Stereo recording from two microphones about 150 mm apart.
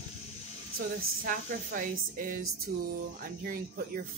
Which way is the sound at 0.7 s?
65° right (ahead or behind).